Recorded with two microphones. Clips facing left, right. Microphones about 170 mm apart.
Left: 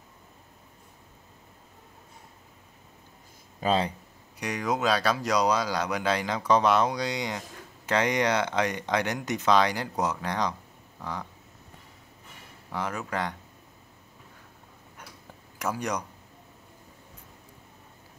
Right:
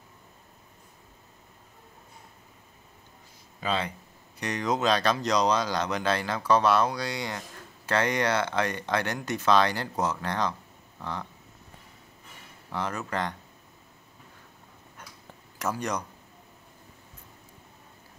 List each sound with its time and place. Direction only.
3.6 s speech: 40° left (ahead or behind)
4.4 s speech: 10° left (ahead or behind)
12.6 s speech: 10° left (ahead or behind)
15.6 s speech: 10° left (ahead or behind)